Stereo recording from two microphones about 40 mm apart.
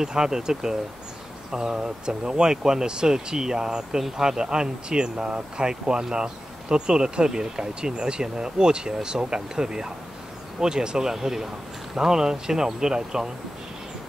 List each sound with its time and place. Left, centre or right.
0.0 s speech: centre